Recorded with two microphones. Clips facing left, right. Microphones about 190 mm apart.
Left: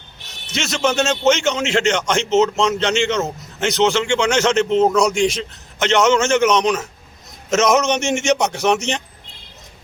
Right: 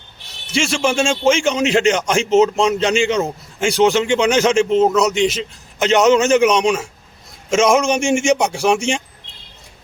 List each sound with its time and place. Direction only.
0.5 s a man's voice: 10° right (ahead or behind)
5.9 s a man's voice: 15° right (ahead or behind)